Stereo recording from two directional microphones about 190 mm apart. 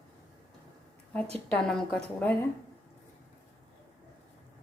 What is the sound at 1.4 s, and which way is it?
Speech, 5° left (ahead or behind).